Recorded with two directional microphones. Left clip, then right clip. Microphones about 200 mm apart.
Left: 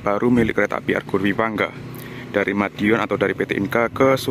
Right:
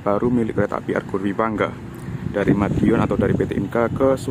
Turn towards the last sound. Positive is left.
turn(degrees=10)  # may be behind; listen again after turning